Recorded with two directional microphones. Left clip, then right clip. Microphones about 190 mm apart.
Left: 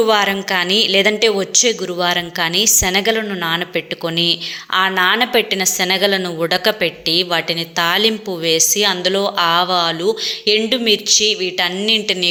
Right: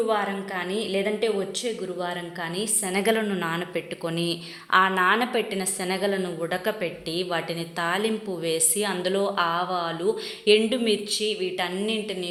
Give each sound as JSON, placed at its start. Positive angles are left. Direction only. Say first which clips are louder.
{"t": 0.0, "sound": "a woman's voice", "louder": "left 11 dB", "side_deg": 30}
{"t": 3.0, "sound": "speech", "louder": "left 6 dB", "side_deg": 5}